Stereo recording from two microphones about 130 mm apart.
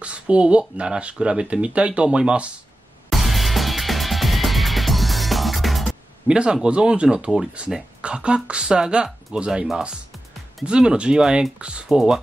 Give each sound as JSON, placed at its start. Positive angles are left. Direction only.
{"t": 0.0, "sound": "speech", "side_deg": -10}
{"t": 3.1, "sound": "music", "side_deg": 0}
{"t": 10.6, "sound": "speech", "side_deg": -5}